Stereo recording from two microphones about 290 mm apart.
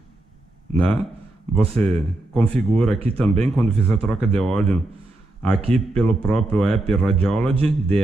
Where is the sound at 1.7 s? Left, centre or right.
Centre.